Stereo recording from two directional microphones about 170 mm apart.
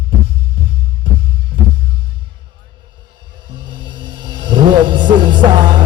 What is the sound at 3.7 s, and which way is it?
Music, 25° right (ahead or behind).